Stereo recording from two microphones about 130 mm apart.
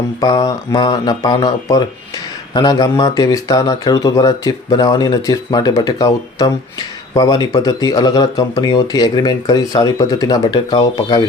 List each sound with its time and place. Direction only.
0.2 s speech: 30° left (ahead or behind)